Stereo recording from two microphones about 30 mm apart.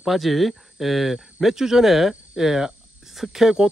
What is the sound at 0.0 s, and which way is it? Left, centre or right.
Speech, centre.